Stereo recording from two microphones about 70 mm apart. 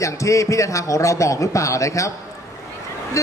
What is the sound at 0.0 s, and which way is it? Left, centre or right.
A man's voice, left.